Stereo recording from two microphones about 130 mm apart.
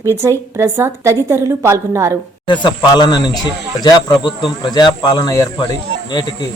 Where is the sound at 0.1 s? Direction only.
20° right (ahead or behind).